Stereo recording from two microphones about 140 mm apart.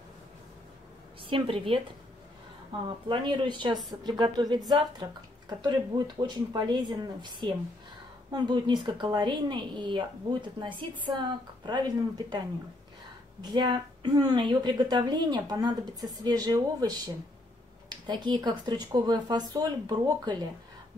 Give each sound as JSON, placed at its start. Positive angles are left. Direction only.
{"t": 1.3, "sound": "speech", "side_deg": -40}
{"t": 3.1, "sound": "speech", "side_deg": -35}
{"t": 11.1, "sound": "a woman's voice", "side_deg": -30}
{"t": 13.4, "sound": "a woman's voice", "side_deg": -35}